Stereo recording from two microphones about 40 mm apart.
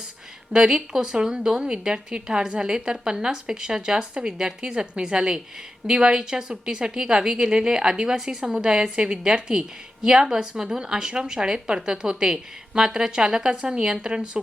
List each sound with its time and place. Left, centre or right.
0.5 s speech: centre